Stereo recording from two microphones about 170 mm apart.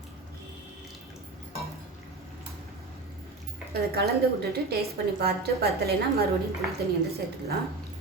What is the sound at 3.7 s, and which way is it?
A woman's voice, 70° right (ahead or behind).